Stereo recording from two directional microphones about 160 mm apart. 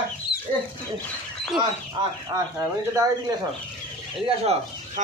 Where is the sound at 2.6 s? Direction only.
20° right (ahead or behind).